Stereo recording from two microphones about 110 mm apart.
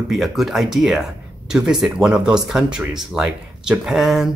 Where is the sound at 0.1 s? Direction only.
Centre (ahead or behind).